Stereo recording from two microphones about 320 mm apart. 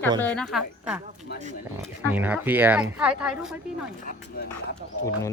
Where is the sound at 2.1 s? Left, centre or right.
Centre.